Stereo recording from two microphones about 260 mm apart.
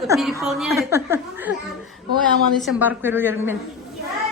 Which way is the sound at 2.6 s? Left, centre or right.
Centre.